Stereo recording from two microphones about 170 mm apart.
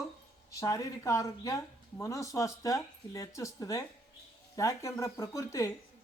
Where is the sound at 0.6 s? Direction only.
20° left (ahead or behind).